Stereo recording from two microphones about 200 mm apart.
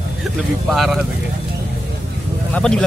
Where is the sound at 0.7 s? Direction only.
Centre (ahead or behind).